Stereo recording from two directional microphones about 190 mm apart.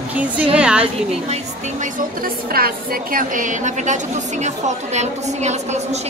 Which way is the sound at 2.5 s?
50° right (ahead or behind).